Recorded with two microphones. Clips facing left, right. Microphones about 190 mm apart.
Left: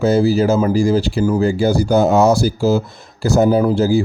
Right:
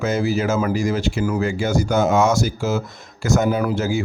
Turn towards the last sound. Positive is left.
turn(degrees=35)  # may be behind; listen again after turning